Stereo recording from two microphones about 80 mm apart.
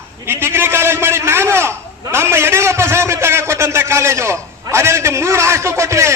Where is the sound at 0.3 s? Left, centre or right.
Right.